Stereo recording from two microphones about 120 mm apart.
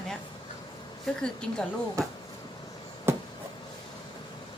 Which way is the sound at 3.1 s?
20° right (ahead or behind).